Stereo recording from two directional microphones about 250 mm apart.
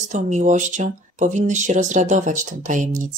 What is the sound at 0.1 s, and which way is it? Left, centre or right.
Speech, right.